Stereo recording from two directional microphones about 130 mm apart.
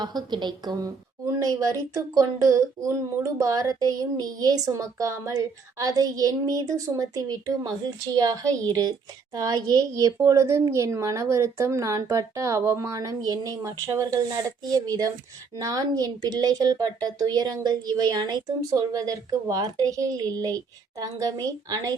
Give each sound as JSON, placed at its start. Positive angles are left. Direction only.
{"t": 0.0, "sound": "a woman's voice", "side_deg": -30}